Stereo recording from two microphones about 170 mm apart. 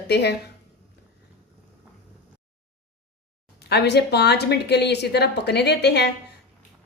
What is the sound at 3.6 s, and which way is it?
A woman's voice, 70° left (ahead or behind).